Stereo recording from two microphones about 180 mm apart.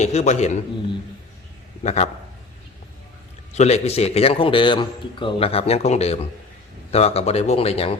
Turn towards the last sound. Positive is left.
turn(degrees=35)  # may be behind; listen again after turning